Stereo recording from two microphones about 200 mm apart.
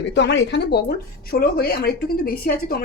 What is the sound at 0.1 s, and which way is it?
A woman's voice, 60° left (ahead or behind).